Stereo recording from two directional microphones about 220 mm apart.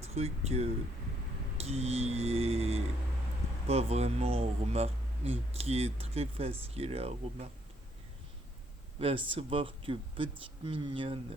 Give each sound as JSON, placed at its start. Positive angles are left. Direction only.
{"t": 0.0, "sound": "speech", "side_deg": -30}
{"t": 9.0, "sound": "speech", "side_deg": -25}